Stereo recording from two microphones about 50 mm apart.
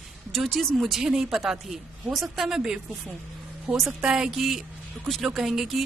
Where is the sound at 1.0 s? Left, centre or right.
Centre.